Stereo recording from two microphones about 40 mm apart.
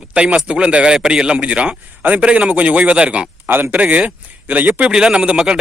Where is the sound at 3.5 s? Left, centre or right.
Right.